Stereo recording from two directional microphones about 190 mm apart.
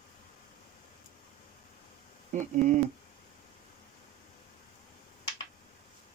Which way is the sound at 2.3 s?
40° right (ahead or behind).